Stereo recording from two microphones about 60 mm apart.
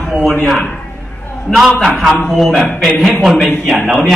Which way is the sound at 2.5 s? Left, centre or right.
Centre.